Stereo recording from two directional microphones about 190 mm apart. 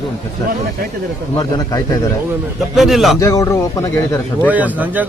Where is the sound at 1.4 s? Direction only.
20° left (ahead or behind).